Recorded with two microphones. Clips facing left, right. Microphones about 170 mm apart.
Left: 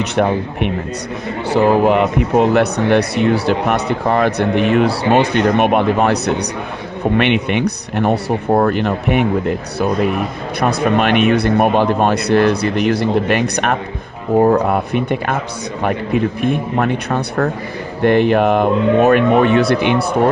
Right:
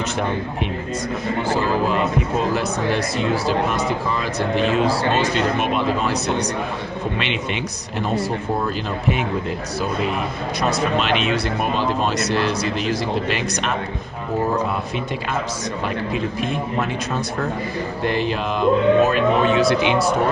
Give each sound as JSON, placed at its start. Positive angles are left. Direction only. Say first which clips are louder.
{"t": 0.0, "sound": "speech", "louder": "left 7 dB", "side_deg": 65}
{"t": 10.6, "sound": "speech", "louder": "left 6 dB", "side_deg": 60}